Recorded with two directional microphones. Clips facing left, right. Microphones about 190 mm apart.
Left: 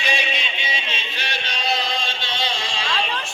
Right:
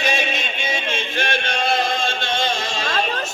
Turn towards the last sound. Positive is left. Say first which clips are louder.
# right 3 dB
turn(degrees=-45)  # may be behind; listen again after turning